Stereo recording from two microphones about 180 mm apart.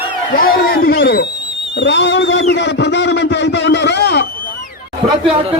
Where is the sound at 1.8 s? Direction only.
75° left (ahead or behind).